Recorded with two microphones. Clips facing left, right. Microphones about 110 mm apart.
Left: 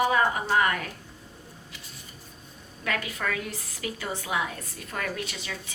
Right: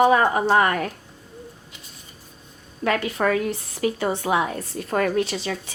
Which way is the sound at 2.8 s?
35° right (ahead or behind).